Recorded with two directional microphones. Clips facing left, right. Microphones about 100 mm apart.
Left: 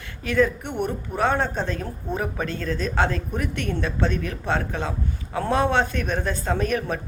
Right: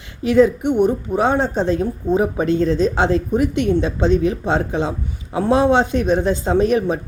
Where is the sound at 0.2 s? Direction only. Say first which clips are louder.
Right 8 dB; 15° right (ahead or behind).